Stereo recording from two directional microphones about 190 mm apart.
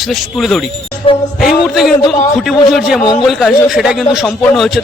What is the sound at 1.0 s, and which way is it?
Music, 30° left (ahead or behind).